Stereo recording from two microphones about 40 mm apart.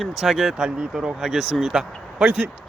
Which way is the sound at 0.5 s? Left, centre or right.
Centre.